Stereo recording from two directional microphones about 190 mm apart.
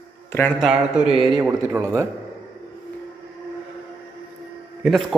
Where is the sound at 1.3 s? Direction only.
15° right (ahead or behind).